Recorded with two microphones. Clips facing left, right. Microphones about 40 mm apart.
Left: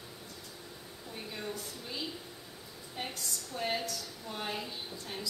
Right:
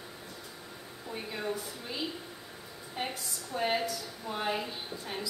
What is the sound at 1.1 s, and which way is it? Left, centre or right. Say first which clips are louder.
A woman's voice: right 5 dB; centre.